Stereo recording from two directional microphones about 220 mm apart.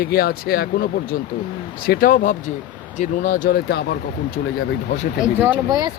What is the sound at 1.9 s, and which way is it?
Speech, 40° left (ahead or behind).